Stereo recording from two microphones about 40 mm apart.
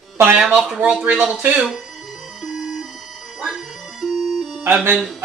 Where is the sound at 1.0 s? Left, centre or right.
Right.